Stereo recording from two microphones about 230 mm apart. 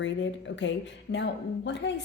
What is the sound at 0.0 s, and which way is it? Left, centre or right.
A woman's voice, left.